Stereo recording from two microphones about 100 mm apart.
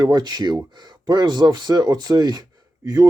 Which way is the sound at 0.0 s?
45° right (ahead or behind).